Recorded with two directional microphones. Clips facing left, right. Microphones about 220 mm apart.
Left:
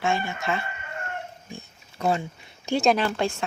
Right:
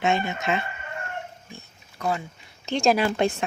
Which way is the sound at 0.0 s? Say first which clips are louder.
Right 2 dB; 20° right (ahead or behind).